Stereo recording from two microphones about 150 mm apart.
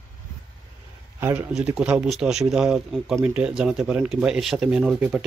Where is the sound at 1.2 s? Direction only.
15° right (ahead or behind).